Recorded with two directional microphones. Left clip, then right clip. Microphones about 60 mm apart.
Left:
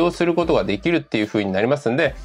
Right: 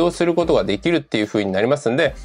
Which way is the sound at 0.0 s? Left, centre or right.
Right.